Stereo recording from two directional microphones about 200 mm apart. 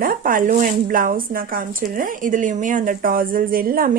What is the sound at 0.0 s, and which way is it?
A woman's voice, 45° right (ahead or behind).